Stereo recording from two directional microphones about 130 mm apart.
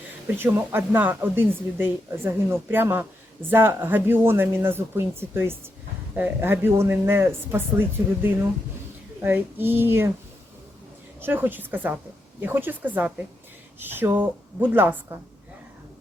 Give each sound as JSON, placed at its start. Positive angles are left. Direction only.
{"t": 0.3, "sound": "speech", "side_deg": -15}
{"t": 11.2, "sound": "speech", "side_deg": -15}